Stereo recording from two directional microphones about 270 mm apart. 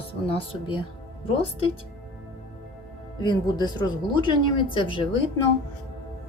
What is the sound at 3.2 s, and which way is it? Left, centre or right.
A woman's voice, centre.